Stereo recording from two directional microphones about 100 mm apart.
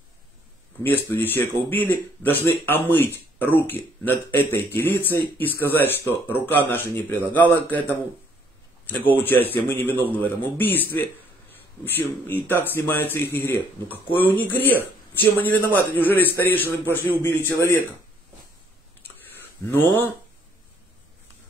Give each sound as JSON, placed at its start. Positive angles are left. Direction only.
{"t": 1.1, "sound": "speech", "side_deg": 20}
{"t": 9.0, "sound": "speech", "side_deg": 20}
{"t": 19.3, "sound": "a sound", "side_deg": 20}